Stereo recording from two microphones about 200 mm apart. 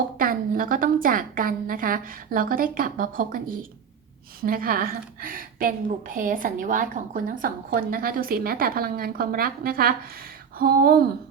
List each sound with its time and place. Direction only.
0.2 s a woman's voice: 45° right (ahead or behind)